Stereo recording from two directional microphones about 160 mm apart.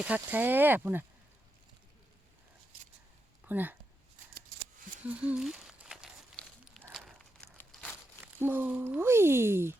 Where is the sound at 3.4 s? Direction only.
10° right (ahead or behind).